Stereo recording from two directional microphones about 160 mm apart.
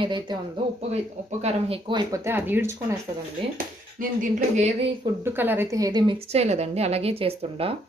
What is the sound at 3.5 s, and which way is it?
Speech, 55° right (ahead or behind).